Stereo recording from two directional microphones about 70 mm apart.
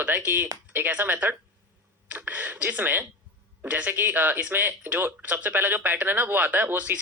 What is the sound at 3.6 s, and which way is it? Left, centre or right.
Speech, right.